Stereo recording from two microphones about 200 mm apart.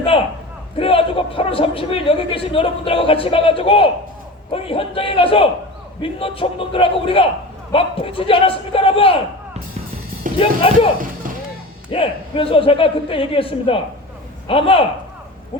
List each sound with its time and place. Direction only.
0.1 s a sound: 25° left (ahead or behind)
0.8 s a woman's voice: 25° left (ahead or behind)
10.4 s a woman's voice: 25° left (ahead or behind)
11.9 s a woman's voice: 25° left (ahead or behind)